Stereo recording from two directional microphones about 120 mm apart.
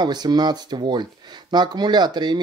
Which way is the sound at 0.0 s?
35° right (ahead or behind).